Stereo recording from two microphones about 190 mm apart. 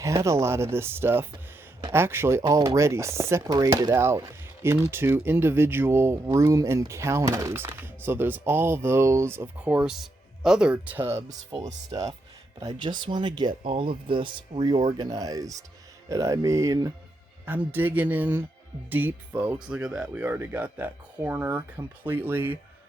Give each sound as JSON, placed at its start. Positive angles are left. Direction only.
{"t": 0.0, "sound": "speech", "side_deg": -15}